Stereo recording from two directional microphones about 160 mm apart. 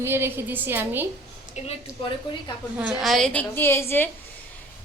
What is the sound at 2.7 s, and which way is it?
A woman's voice, 5° right (ahead or behind).